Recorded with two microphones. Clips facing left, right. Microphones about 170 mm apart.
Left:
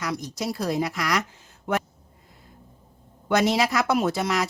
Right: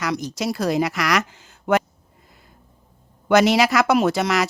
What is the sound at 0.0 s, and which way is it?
Speech, 90° right.